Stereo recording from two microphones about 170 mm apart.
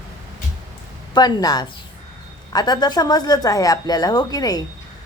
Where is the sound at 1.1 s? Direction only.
25° left (ahead or behind).